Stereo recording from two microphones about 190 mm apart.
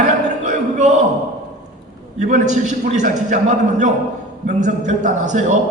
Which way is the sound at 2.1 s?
40° right (ahead or behind).